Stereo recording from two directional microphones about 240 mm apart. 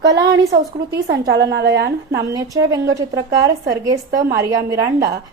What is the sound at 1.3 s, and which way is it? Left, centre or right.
Speech, right.